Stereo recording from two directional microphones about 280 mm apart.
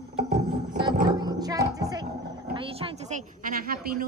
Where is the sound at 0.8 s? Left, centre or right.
Centre.